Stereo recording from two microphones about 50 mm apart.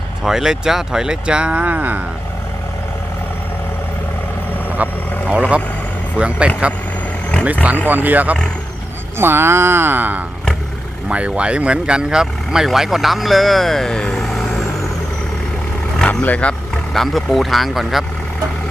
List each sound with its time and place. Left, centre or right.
0.3 s speech: centre; by 2.0 s right
4.8 s speech: right
7.9 s speech: right
9.1 s speech: right
11.1 s speech: right; by 14.6 s centre
16.0 s speech: left
16.9 s speech: centre